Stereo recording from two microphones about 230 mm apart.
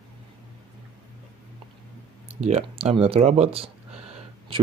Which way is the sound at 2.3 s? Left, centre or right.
Right.